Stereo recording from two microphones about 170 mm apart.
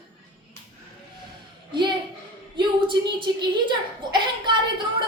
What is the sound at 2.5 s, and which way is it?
A woman's voice, 30° right (ahead or behind).